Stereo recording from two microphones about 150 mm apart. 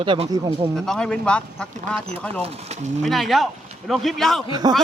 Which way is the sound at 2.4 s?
50° right (ahead or behind).